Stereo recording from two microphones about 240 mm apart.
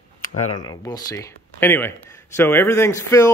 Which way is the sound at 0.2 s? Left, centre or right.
Left.